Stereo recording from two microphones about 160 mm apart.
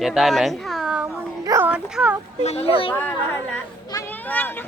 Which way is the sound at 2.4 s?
40° left (ahead or behind).